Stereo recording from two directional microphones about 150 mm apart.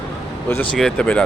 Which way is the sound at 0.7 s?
5° left (ahead or behind).